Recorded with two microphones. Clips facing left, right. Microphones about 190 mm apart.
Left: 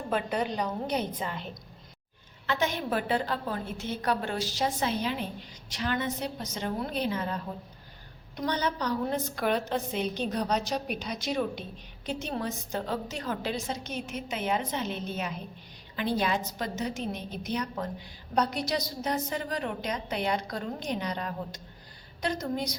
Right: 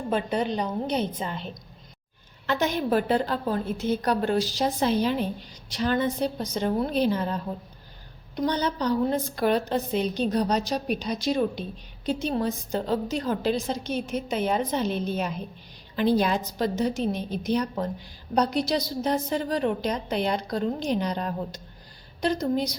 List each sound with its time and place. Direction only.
0.1 s a woman's voice: 25° right (ahead or behind)
2.5 s a woman's voice: 40° right (ahead or behind)
8.4 s a woman's voice: 30° right (ahead or behind)